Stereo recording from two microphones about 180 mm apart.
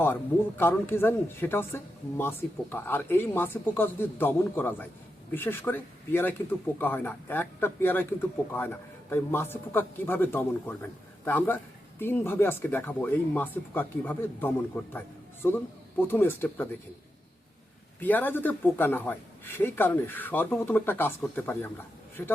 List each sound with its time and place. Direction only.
0.0 s speech: 10° left (ahead or behind)
18.0 s speech: 10° left (ahead or behind)